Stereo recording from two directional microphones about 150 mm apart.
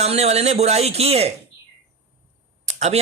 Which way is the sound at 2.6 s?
50° right (ahead or behind).